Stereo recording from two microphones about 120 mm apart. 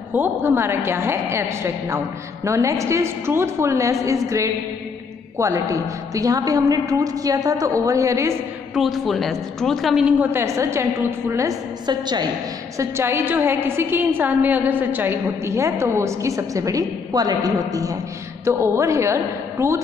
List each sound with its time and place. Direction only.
0.1 s a woman's voice: 15° right (ahead or behind)
5.4 s a woman's voice: 25° right (ahead or behind)
8.7 s a woman's voice: centre (ahead or behind)
10.3 s a woman's voice: 25° right (ahead or behind)
11.8 s a woman's voice: 35° right (ahead or behind)
12.7 s a woman's voice: 20° right (ahead or behind)